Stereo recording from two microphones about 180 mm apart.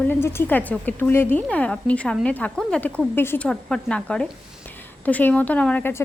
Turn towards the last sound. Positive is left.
turn(degrees=15)  # may be behind; listen again after turning